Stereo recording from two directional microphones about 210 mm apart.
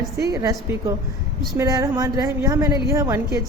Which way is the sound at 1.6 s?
15° right (ahead or behind).